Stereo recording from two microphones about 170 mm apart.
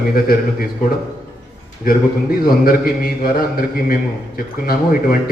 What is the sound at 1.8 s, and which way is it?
A man's voice, 60° left (ahead or behind).